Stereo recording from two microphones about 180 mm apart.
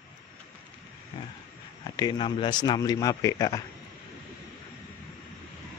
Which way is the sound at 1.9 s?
25° left (ahead or behind).